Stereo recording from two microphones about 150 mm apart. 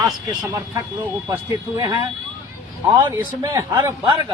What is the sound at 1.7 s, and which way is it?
Speech, 30° right (ahead or behind).